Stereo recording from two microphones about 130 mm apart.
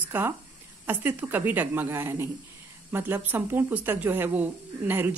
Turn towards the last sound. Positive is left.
turn(degrees=-15)  # may be behind; listen again after turning